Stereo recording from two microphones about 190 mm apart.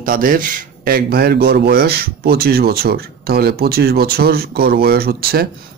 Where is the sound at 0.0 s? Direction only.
45° right (ahead or behind).